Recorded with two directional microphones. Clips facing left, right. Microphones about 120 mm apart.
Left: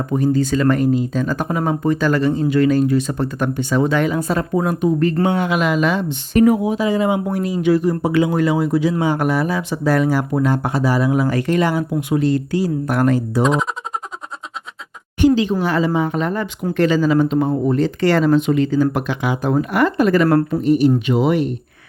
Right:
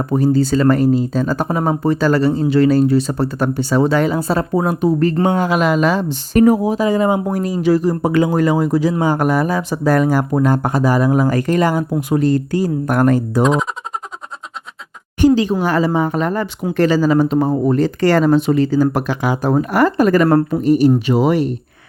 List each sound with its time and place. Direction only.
0.0 s speech: 35° right (ahead or behind)
13.4 s speech: centre (ahead or behind)
15.2 s a sound: 40° right (ahead or behind)
15.6 s speech: 45° right (ahead or behind)